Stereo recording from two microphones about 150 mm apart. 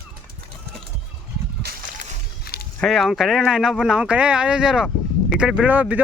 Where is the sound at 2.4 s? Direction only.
90° left.